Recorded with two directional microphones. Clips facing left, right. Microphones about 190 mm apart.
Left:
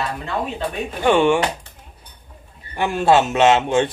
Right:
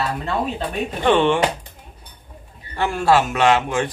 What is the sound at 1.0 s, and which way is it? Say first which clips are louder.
Speech: left 1 dB; 10° left (ahead or behind).